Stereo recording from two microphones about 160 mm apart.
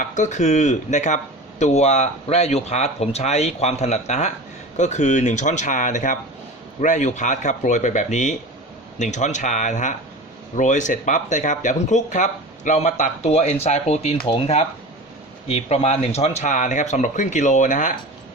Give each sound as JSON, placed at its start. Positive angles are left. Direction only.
{"t": 0.0, "sound": "speech", "side_deg": 50}